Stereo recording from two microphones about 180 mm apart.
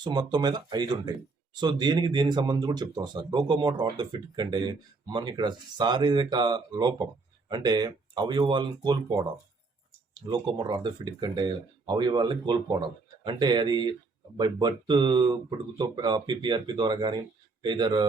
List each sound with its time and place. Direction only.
0.0 s speech: 25° right (ahead or behind)
10.2 s speech: 25° right (ahead or behind)